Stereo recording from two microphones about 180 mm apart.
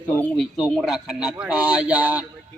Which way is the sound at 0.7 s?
Centre (ahead or behind).